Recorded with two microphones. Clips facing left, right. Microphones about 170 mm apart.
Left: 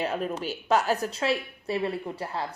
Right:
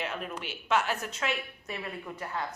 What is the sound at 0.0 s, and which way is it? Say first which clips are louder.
Speech: left 7 dB; 40° left (ahead or behind).